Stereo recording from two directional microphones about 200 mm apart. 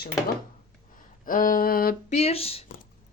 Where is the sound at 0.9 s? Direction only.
45° left (ahead or behind).